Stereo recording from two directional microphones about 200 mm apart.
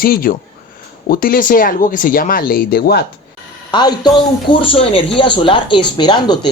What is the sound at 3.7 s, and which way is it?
Speech, 20° left (ahead or behind).